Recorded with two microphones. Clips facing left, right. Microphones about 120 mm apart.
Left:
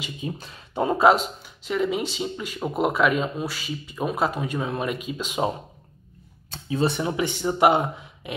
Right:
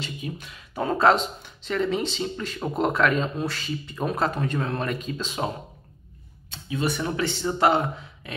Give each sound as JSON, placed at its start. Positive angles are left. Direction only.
{"t": 0.2, "sound": "speech", "side_deg": 35}
{"t": 0.7, "sound": "speech", "side_deg": 15}
{"t": 6.5, "sound": "speech", "side_deg": 30}
{"t": 7.0, "sound": "speech", "side_deg": 15}